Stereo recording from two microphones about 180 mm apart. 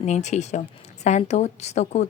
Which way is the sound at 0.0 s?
40° left (ahead or behind).